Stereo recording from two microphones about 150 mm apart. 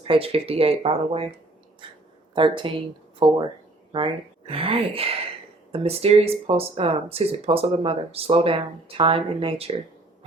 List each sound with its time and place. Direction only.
0.1 s speech: 40° right (ahead or behind)
1.8 s a sound: 30° right (ahead or behind)
2.3 s speech: 35° right (ahead or behind)